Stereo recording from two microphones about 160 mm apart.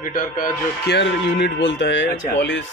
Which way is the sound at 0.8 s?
90° left.